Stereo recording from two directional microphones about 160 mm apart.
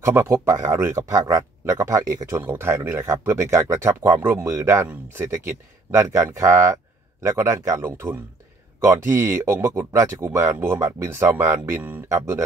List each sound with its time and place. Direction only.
0.0 s speech: 15° right (ahead or behind)